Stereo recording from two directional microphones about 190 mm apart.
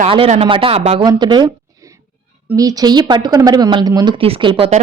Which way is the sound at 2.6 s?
20° right (ahead or behind).